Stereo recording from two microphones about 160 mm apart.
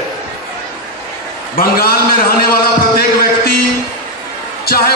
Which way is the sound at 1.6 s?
65° left (ahead or behind).